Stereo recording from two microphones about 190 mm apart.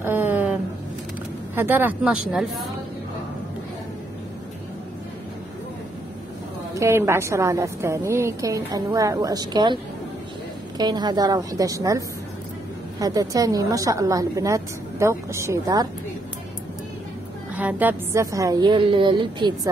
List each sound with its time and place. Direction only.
0.0 s a sound: 10° right (ahead or behind)
1.5 s a woman's voice: 10° right (ahead or behind)
6.7 s a woman's voice: 15° right (ahead or behind)
10.8 s a woman's voice: 20° right (ahead or behind)
13.0 s a woman's voice: 20° right (ahead or behind)
17.6 s a woman's voice: 10° right (ahead or behind)